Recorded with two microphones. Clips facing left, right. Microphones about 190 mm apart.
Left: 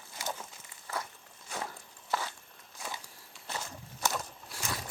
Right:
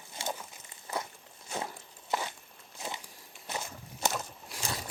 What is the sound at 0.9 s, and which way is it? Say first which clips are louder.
Walk: right 2 dB; 20° right (ahead or behind).